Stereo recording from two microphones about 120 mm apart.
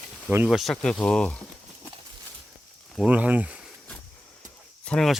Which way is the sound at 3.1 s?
10° right (ahead or behind).